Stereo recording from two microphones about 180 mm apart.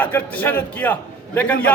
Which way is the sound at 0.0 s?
10° left (ahead or behind).